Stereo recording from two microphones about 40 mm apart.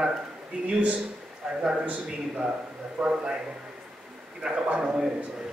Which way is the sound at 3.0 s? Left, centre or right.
Right.